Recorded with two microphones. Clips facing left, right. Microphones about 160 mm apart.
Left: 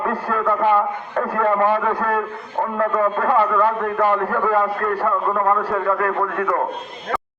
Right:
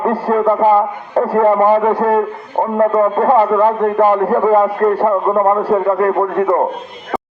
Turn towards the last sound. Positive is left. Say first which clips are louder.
# right 7 dB
turn(degrees=-30)  # may be behind; listen again after turning